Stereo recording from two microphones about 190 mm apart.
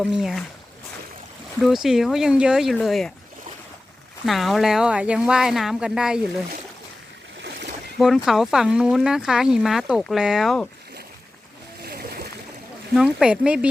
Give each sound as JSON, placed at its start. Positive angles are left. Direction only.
{"t": 0.0, "sound": "speech", "side_deg": -5}
{"t": 1.6, "sound": "speech", "side_deg": 0}
{"t": 4.3, "sound": "speech", "side_deg": 0}
{"t": 7.9, "sound": "speech", "side_deg": 0}
{"t": 11.9, "sound": "splash", "side_deg": -55}
{"t": 13.0, "sound": "speech", "side_deg": -5}